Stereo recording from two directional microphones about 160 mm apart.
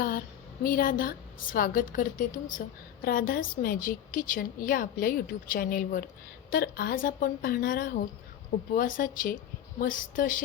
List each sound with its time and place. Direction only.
0.6 s a woman's voice: 60° left (ahead or behind)